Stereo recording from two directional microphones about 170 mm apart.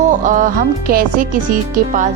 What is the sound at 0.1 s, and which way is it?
Speech, 50° right (ahead or behind).